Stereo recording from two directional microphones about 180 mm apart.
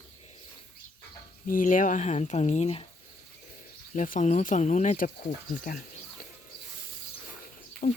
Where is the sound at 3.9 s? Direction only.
45° left (ahead or behind).